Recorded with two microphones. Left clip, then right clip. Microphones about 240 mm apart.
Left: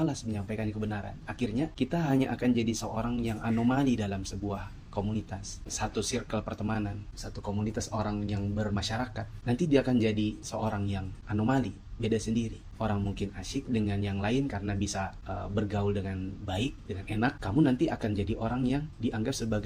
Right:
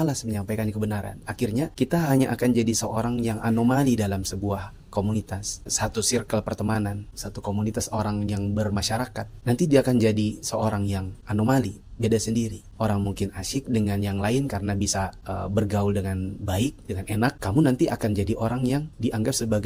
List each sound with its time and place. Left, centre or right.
0.0 s speech: right